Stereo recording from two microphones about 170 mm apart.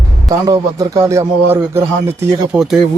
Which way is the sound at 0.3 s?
20° right (ahead or behind).